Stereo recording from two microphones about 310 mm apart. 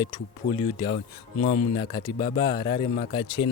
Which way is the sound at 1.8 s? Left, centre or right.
Centre.